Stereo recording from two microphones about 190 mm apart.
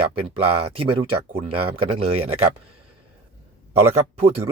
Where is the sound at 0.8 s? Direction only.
30° right (ahead or behind).